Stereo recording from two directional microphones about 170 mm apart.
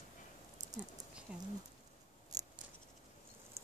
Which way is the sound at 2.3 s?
20° right (ahead or behind).